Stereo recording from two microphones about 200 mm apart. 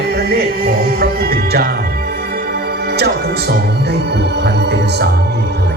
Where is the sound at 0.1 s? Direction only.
50° right (ahead or behind).